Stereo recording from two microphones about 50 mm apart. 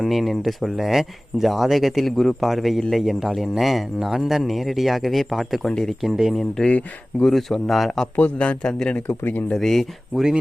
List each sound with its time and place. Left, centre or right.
0.0 s speech: centre
6.3 s speech: centre
8.4 s a man's voice: centre
9.0 s speech: left
9.5 s speech: centre